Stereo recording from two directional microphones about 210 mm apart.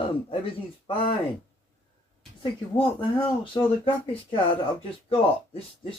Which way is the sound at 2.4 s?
25° left (ahead or behind).